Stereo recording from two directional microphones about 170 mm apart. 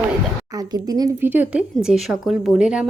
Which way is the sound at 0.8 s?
20° right (ahead or behind).